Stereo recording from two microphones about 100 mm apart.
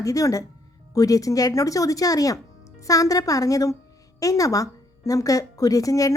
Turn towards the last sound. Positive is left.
turn(degrees=35)  # may be behind; listen again after turning